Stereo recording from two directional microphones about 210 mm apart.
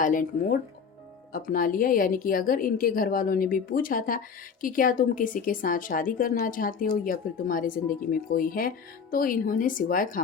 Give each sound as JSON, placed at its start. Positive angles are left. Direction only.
{"t": 0.0, "sound": "a woman's voice", "side_deg": 40}